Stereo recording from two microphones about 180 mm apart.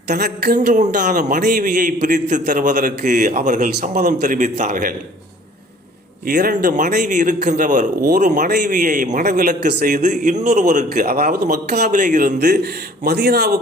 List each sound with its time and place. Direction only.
0.2 s speech: 60° right (ahead or behind)
0.8 s a man's voice: 45° right (ahead or behind)
6.2 s a man's voice: 50° right (ahead or behind)
10.9 s a man's voice: 55° right (ahead or behind)
12.5 s speech: 65° right (ahead or behind)